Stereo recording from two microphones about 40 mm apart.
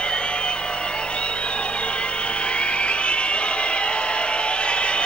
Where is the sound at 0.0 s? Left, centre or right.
Left.